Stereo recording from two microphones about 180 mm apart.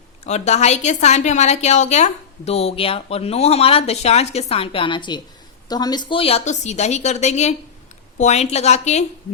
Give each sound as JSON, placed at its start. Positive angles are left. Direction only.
{"t": 0.3, "sound": "a woman's voice", "side_deg": 40}